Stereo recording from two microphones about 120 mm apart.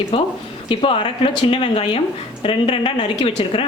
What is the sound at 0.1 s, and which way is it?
Speech, 50° left (ahead or behind).